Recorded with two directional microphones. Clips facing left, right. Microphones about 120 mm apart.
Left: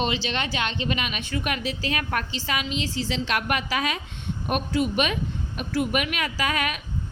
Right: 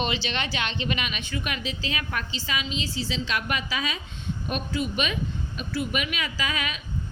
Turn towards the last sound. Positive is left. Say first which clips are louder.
# left 4 dB
turn(degrees=60)  # may be behind; listen again after turning